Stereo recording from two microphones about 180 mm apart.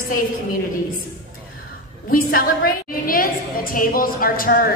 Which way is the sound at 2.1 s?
50° left (ahead or behind).